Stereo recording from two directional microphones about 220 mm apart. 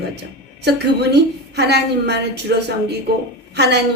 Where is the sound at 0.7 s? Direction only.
50° right (ahead or behind).